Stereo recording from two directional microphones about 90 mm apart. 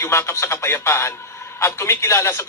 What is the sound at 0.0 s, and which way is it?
A man's voice, 30° left (ahead or behind).